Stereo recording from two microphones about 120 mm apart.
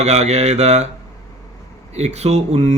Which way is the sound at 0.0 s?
65° right (ahead or behind).